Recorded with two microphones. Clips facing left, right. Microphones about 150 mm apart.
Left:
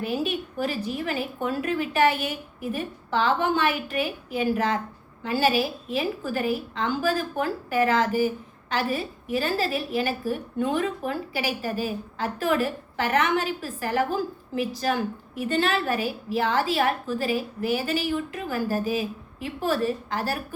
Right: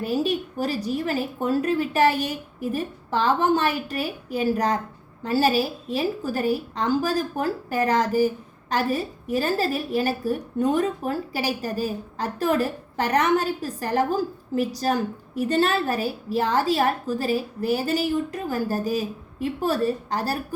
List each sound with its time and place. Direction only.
0.0 s a woman's voice: 40° right (ahead or behind)